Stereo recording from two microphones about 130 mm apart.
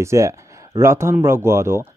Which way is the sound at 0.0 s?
20° right (ahead or behind).